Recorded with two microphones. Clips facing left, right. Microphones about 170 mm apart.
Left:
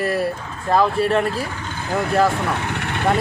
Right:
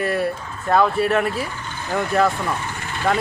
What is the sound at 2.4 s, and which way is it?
Vehicle, 70° left (ahead or behind).